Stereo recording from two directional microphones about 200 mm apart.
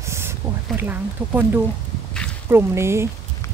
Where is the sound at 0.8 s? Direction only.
10° right (ahead or behind).